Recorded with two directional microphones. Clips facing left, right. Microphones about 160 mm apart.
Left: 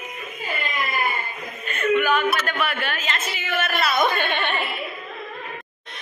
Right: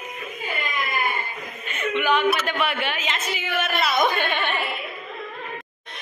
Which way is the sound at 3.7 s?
20° right (ahead or behind).